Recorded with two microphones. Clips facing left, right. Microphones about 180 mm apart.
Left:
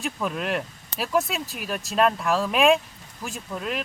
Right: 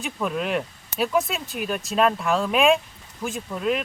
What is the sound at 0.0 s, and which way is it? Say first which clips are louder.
Speech: right 2 dB; centre (ahead or behind).